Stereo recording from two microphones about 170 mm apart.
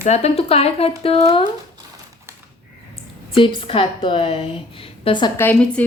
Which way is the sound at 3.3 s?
30° left (ahead or behind).